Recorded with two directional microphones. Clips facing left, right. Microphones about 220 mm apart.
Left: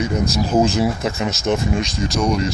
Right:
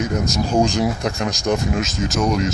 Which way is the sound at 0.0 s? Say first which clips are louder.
Left 1 dB; centre (ahead or behind).